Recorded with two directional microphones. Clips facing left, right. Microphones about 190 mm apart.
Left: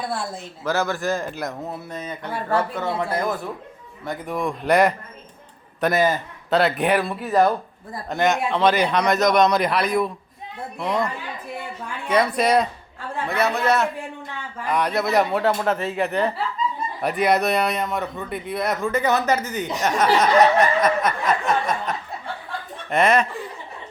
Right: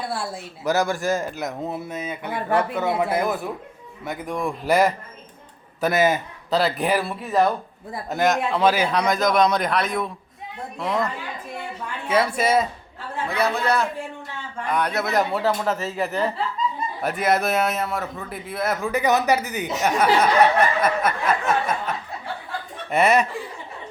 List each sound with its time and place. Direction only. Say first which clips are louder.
0.1 s a man's voice: left 1 dB; 10° right (ahead or behind)
20.6 s snicker: left 1 dB; 5° right (ahead or behind)
22.9 s speech: even; 5° right (ahead or behind)